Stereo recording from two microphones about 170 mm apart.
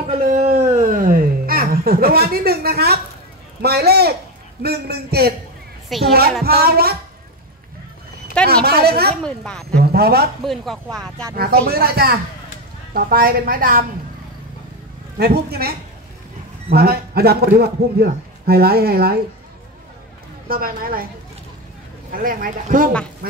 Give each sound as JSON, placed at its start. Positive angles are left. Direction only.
{"t": 0.2, "sound": "a sound", "side_deg": -45}
{"t": 3.6, "sound": "a man's voice", "side_deg": -70}
{"t": 5.9, "sound": "speech", "side_deg": 0}
{"t": 6.4, "sound": "speech", "side_deg": -65}
{"t": 8.6, "sound": "a man's voice", "side_deg": -65}
{"t": 9.1, "sound": "a woman's voice", "side_deg": 5}
{"t": 9.8, "sound": "a man's voice", "side_deg": -65}
{"t": 10.4, "sound": "a woman's voice", "side_deg": 0}
{"t": 11.3, "sound": "speech", "side_deg": -65}
{"t": 15.1, "sound": "a man's voice", "side_deg": -70}
{"t": 16.7, "sound": "speech", "side_deg": -65}
{"t": 20.4, "sound": "speech", "side_deg": -60}
{"t": 22.1, "sound": "speech", "side_deg": -55}